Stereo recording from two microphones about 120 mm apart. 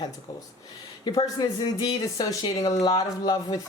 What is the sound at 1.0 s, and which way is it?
A woman's voice, 35° left (ahead or behind).